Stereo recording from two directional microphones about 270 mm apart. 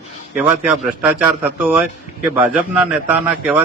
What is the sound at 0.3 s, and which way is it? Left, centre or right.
Speech, centre.